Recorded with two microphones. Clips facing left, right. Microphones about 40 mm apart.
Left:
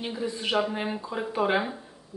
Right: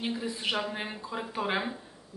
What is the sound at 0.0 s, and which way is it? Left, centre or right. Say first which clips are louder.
Speech: left 2 dB; centre.